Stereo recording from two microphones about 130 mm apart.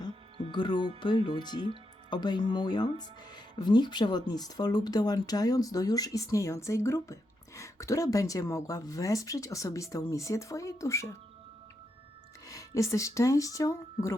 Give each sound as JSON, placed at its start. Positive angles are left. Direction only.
{"t": 0.5, "sound": "speech", "side_deg": 35}
{"t": 12.5, "sound": "speech", "side_deg": 25}